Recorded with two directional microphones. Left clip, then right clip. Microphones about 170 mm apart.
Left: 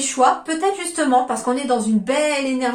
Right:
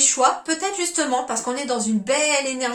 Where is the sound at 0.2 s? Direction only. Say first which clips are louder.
Left 7 dB; 20° right (ahead or behind).